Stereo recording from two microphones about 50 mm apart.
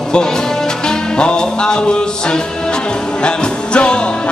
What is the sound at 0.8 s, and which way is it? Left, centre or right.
Music, centre.